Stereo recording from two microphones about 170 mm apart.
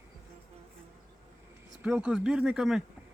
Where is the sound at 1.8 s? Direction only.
5° right (ahead or behind).